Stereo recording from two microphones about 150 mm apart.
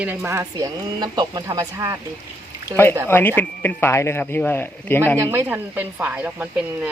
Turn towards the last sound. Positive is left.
turn(degrees=-10)  # may be behind; listen again after turning